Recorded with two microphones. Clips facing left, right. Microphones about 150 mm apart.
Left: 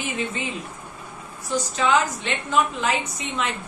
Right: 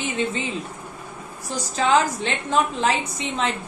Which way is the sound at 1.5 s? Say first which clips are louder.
Right 1 dB; 35° right (ahead or behind).